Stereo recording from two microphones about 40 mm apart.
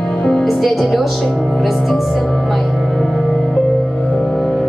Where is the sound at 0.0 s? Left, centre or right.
Centre.